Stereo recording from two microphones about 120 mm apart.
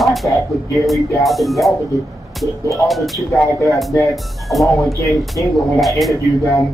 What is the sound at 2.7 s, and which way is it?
Speech, centre (ahead or behind).